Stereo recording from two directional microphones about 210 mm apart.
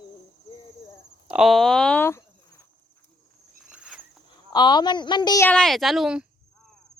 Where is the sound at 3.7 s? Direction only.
5° right (ahead or behind).